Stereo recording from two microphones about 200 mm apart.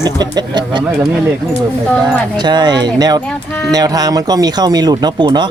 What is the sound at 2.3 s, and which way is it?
Speech, 20° right (ahead or behind).